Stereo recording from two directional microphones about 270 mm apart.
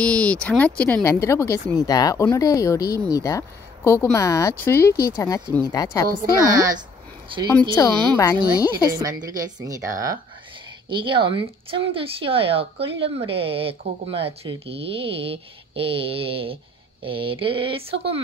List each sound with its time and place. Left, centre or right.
0.0 s speech: centre
7.7 s speech: centre
9.0 s speech: centre